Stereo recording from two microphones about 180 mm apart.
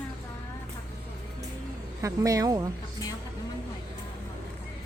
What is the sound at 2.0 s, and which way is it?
Speech, 20° right (ahead or behind).